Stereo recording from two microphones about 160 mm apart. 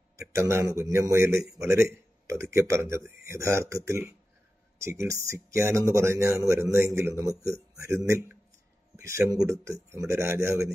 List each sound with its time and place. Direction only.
0.2 s speech: 20° right (ahead or behind)